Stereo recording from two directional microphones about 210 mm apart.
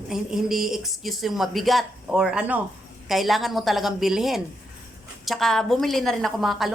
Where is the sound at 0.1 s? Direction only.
Centre (ahead or behind).